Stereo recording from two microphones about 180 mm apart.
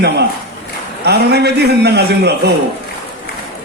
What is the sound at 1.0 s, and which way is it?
A man's voice, 65° right (ahead or behind).